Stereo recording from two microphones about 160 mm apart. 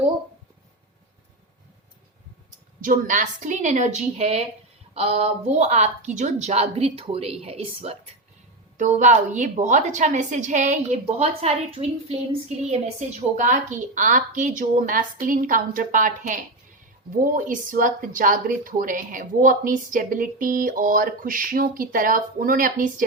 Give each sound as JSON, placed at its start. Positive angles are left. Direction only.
{"t": 2.8, "sound": "a woman's voice", "side_deg": -55}
{"t": 8.8, "sound": "a woman's voice", "side_deg": -50}